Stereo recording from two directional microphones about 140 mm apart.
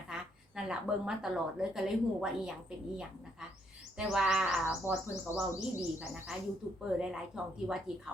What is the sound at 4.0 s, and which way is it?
A child's voice, 5° right (ahead or behind).